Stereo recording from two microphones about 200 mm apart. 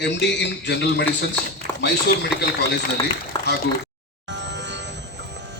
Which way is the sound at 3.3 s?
20° left (ahead or behind).